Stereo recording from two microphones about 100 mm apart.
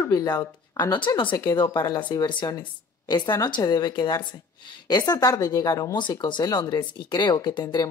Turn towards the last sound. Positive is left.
turn(degrees=45)  # may be behind; listen again after turning